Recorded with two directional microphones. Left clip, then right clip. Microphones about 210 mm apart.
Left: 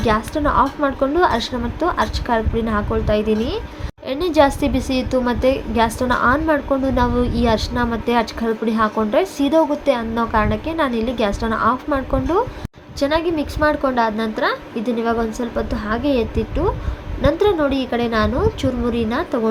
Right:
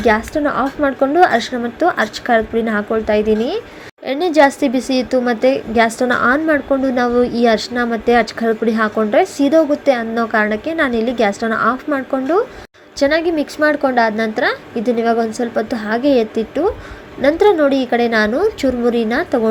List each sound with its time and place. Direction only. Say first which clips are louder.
0.0 s a woman's voice: right 4 dB; 15° right (ahead or behind)